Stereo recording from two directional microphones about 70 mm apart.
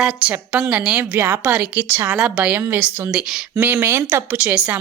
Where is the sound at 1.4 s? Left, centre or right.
Centre.